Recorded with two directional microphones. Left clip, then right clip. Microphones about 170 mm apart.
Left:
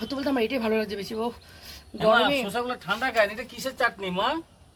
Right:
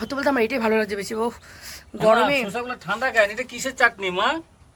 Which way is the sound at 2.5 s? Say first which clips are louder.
Right 1 dB; 65° right (ahead or behind).